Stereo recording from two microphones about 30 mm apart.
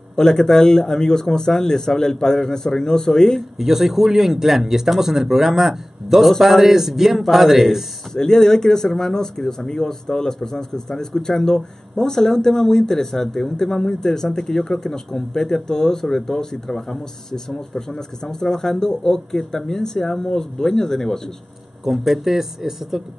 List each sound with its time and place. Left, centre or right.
0.1 s a man's voice: centre
3.5 s speech: centre
8.1 s a man's voice: centre
17.7 s a man's voice: centre
21.8 s speech: centre